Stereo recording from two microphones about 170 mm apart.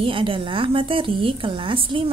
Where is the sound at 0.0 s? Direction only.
30° right (ahead or behind).